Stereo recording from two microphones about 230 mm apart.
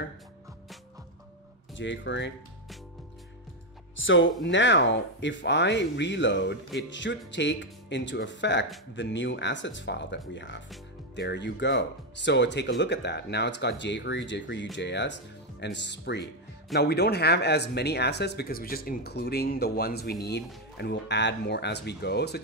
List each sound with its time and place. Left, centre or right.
1.8 s speech: left
3.9 s speech: left